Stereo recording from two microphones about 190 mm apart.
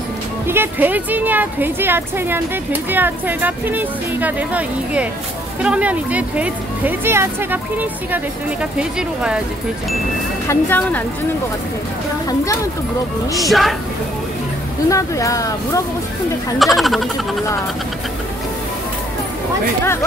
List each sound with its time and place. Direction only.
0.5 s speech: 10° right (ahead or behind)
10.5 s speech: 10° left (ahead or behind)
13.4 s speech: centre (ahead or behind)
14.9 s speech: 15° left (ahead or behind)
16.5 s speech: centre (ahead or behind)
19.8 s speech: 15° left (ahead or behind)